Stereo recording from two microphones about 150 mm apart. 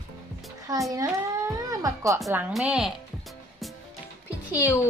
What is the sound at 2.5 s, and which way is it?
Speech, 5° right (ahead or behind).